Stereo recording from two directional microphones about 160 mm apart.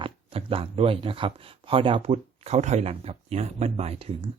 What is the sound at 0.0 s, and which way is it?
Speech, 35° right (ahead or behind).